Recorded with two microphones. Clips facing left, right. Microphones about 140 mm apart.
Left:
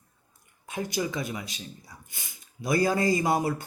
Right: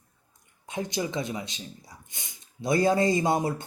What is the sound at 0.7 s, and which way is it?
Speech, 20° right (ahead or behind).